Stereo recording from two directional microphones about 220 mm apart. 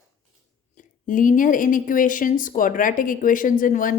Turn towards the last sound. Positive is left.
turn(degrees=35)  # may be behind; listen again after turning